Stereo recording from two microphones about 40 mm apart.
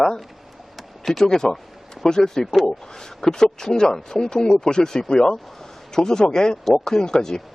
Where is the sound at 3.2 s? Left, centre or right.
Centre.